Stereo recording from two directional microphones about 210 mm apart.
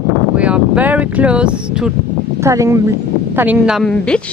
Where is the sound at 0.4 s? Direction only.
5° right (ahead or behind).